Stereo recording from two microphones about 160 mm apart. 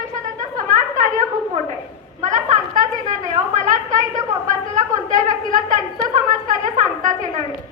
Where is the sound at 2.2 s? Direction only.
50° right (ahead or behind).